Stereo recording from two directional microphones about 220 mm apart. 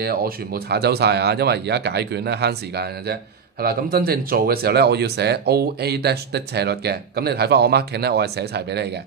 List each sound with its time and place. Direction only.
0.0 s speech: 45° right (ahead or behind)